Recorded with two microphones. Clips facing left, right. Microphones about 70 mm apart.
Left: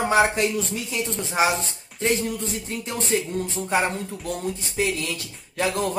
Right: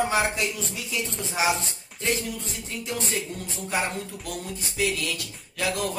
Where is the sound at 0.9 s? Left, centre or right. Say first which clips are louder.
Left 4 dB; left.